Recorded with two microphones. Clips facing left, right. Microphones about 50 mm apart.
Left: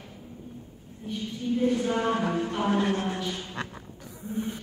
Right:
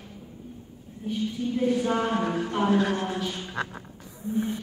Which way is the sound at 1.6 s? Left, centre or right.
Centre.